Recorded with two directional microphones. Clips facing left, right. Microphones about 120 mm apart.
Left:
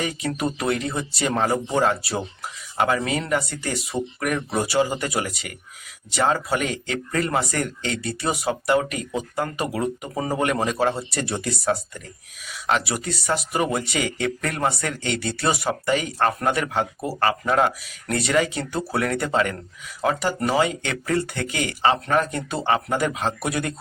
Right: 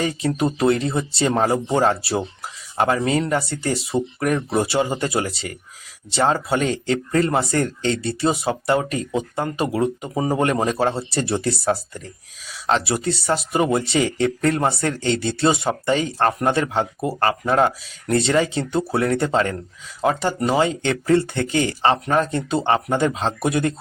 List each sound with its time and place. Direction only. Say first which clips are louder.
0.0 s speech: right 4 dB; 30° right (ahead or behind)